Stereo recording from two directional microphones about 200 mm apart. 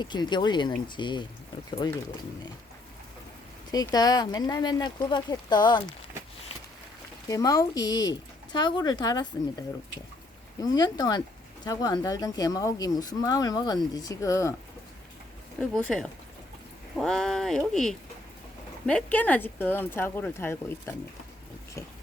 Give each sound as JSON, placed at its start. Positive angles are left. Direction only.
{"t": 0.0, "sound": "speech", "side_deg": 20}
{"t": 3.7, "sound": "speech", "side_deg": 20}
{"t": 7.3, "sound": "speech", "side_deg": 20}
{"t": 15.7, "sound": "speech", "side_deg": 5}
{"t": 18.9, "sound": "speech", "side_deg": 5}